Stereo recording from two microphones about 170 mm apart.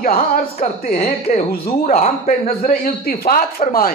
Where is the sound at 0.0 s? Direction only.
55° left (ahead or behind).